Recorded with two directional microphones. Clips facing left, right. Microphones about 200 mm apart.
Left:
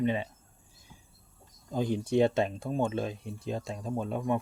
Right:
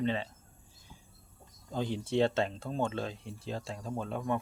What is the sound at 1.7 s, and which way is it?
Speech, 15° left (ahead or behind).